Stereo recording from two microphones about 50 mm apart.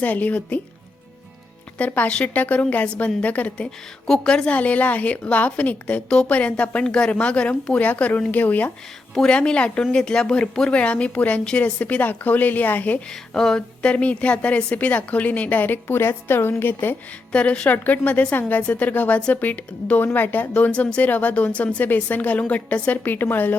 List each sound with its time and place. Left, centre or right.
0.0 s a woman's voice: left
1.8 s a woman's voice: left
4.0 s a woman's voice: centre; by 8.7 s left
9.2 s a woman's voice: centre; by 13.0 s left
13.1 s speech: centre
13.8 s a woman's voice: left
17.3 s a woman's voice: left